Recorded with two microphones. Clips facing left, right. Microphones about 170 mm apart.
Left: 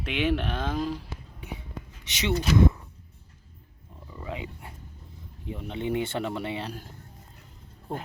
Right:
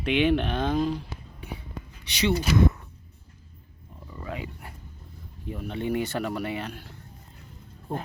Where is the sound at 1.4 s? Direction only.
20° left (ahead or behind).